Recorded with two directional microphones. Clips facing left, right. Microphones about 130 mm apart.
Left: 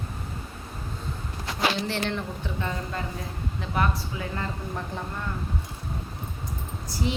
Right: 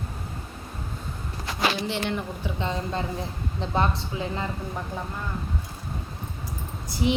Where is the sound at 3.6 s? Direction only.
25° right (ahead or behind).